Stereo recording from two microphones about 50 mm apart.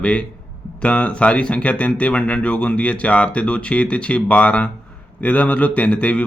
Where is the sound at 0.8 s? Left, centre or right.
Left.